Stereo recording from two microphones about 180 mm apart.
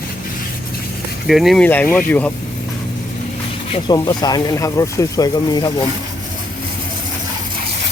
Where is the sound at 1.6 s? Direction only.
10° left (ahead or behind).